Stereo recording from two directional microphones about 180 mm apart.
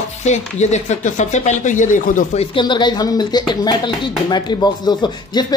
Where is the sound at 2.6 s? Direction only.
25° left (ahead or behind).